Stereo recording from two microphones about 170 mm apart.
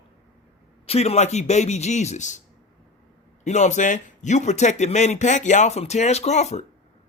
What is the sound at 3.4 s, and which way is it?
Speech, 45° left (ahead or behind).